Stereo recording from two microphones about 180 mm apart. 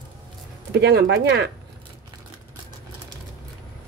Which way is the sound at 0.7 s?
65° right (ahead or behind).